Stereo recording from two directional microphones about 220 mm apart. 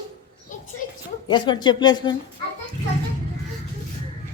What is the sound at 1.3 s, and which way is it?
Speech, 20° left (ahead or behind).